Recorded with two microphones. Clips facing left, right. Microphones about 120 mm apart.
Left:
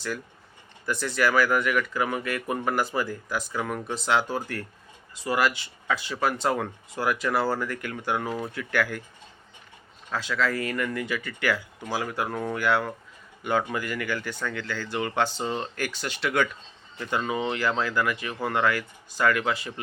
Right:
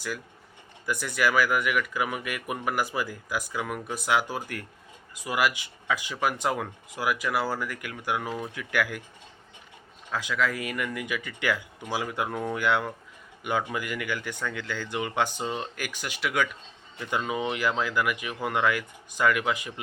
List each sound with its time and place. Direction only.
0.9 s speech: 15° right (ahead or behind)
8.3 s speech: 10° left (ahead or behind)
8.5 s speech: 15° right (ahead or behind)
10.1 s a man's voice: 15° right (ahead or behind)